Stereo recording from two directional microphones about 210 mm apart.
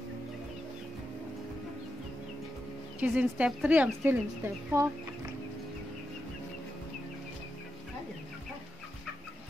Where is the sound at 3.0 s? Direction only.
5° right (ahead or behind).